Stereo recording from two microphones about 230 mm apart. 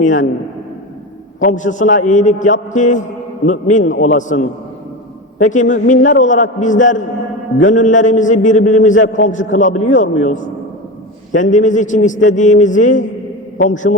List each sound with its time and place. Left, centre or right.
0.0 s a man's voice: left
1.4 s a man's voice: left